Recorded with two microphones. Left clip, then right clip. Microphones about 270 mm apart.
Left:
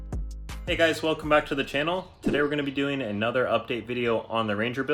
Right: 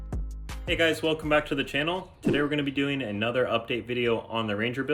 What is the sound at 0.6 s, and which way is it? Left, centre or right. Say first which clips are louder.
Speech: left 1 dB; centre.